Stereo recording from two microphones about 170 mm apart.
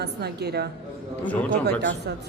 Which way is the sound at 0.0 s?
75° right (ahead or behind).